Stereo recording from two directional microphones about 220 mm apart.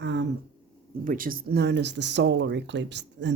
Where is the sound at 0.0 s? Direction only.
55° right (ahead or behind).